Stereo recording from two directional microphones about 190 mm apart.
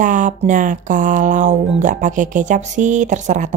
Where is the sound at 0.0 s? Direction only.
40° right (ahead or behind).